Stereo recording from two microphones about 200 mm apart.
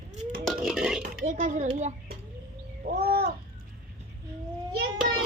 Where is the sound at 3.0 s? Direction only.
50° right (ahead or behind).